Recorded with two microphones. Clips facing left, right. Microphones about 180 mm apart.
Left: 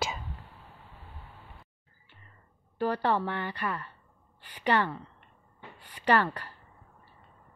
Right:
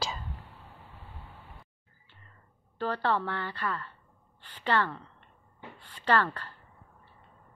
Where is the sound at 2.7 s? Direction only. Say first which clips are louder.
Left 2 dB; 15° left (ahead or behind).